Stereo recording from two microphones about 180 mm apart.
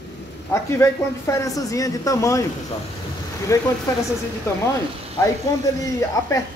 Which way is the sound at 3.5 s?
15° left (ahead or behind).